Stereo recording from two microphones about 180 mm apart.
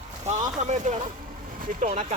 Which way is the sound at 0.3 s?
40° right (ahead or behind).